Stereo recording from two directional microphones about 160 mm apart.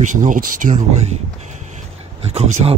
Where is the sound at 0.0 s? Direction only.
55° right (ahead or behind).